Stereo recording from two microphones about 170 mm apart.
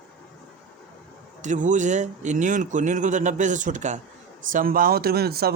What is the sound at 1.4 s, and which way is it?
A man's voice, 45° right (ahead or behind).